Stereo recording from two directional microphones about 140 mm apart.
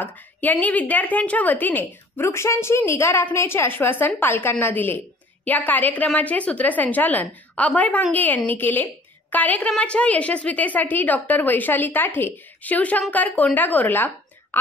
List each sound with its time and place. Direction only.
0.0 s a woman's voice: 10° left (ahead or behind)